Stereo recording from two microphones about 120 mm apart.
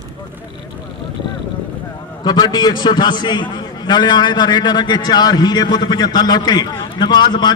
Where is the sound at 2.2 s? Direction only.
35° left (ahead or behind).